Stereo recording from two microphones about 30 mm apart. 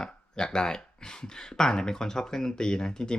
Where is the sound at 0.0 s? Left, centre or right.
Left.